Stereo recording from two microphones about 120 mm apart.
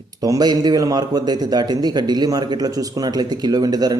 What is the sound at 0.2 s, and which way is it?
A man's voice, 30° right (ahead or behind).